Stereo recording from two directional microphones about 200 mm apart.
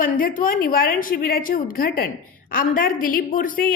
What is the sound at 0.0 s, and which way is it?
A woman's voice, 45° left (ahead or behind).